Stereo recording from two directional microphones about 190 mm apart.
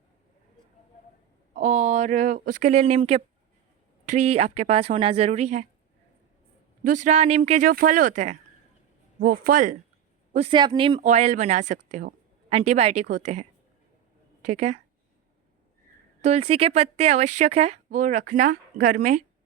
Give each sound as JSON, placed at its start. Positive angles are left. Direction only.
{"t": 1.5, "sound": "speech", "side_deg": -40}
{"t": 6.8, "sound": "speech", "side_deg": -40}
{"t": 10.3, "sound": "speech", "side_deg": -30}
{"t": 11.0, "sound": "speech", "side_deg": -35}
{"t": 11.9, "sound": "a sound", "side_deg": -40}
{"t": 12.5, "sound": "speech", "side_deg": -35}
{"t": 16.2, "sound": "speech", "side_deg": -35}